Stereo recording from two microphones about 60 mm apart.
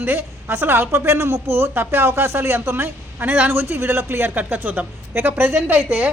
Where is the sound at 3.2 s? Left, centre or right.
Right.